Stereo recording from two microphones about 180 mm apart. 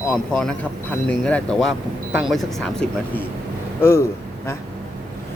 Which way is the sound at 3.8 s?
15° left (ahead or behind).